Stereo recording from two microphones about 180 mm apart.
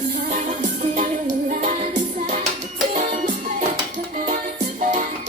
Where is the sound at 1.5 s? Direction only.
45° right (ahead or behind).